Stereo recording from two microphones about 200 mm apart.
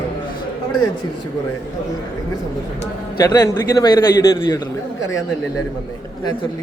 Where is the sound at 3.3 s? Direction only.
15° left (ahead or behind).